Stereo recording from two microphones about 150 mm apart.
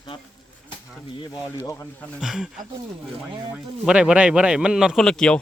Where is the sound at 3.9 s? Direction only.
5° right (ahead or behind).